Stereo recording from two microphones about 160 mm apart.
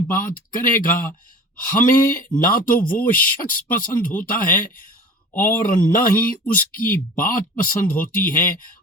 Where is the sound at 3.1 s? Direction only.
60° left (ahead or behind).